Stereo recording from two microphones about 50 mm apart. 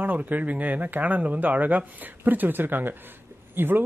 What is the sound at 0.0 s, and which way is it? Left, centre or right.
Speech, right.